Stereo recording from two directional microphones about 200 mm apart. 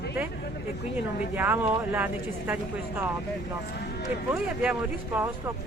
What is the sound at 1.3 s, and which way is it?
Speech, 10° right (ahead or behind).